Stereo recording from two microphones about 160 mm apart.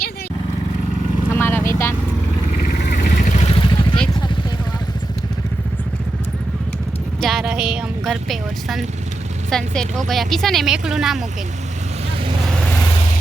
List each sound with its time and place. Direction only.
1.3 s vehicle: 10° left (ahead or behind)
2.9 s vehicle: 50° left (ahead or behind)
3.5 s vehicle: 30° left (ahead or behind)
7.2 s a sound: centre (ahead or behind)
9.5 s a woman's voice: 5° left (ahead or behind)